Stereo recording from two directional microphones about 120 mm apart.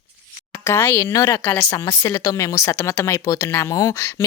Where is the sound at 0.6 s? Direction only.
20° left (ahead or behind).